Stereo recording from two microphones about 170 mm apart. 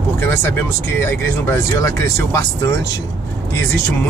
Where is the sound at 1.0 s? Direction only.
15° left (ahead or behind).